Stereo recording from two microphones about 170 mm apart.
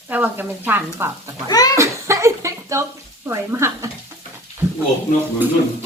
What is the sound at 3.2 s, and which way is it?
Speech, 15° right (ahead or behind).